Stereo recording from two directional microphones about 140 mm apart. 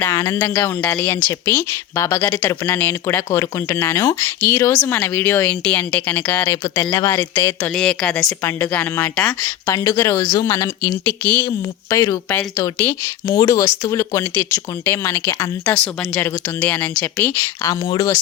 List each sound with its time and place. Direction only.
0.0 s speech: 20° left (ahead or behind)
7.8 s a woman's voice: 5° left (ahead or behind)
9.6 s speech: 20° left (ahead or behind)
11.4 s speech: 20° left (ahead or behind)
13.2 s speech: 30° left (ahead or behind); by 17.3 s 10° left (ahead or behind)
17.8 s speech: 30° left (ahead or behind)